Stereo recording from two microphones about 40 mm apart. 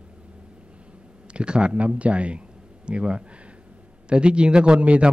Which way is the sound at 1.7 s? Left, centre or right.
Right.